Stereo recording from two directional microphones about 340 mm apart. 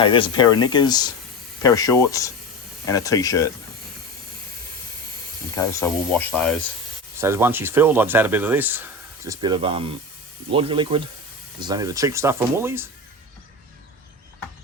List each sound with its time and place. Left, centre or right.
0.0 s speech: centre
5.5 s rub: centre
7.2 s speech: centre